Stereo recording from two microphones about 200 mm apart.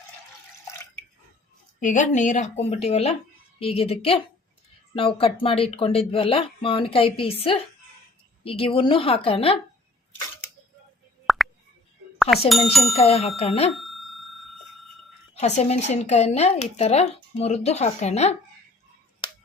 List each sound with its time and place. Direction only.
1.8 s speech: 40° left (ahead or behind)
11.3 s plop: centre (ahead or behind)
12.3 s speech: 30° left (ahead or behind)
12.7 s speech: centre (ahead or behind)
13.0 s speech: 30° left (ahead or behind)
13.7 s a sound: centre (ahead or behind)
15.4 s speech: 35° left (ahead or behind)
19.2 s finger snapping: 25° left (ahead or behind)